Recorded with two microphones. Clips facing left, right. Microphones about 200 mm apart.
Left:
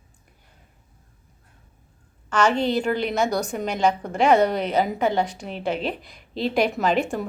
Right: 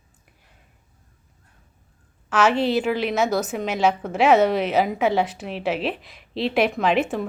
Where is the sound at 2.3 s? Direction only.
5° right (ahead or behind).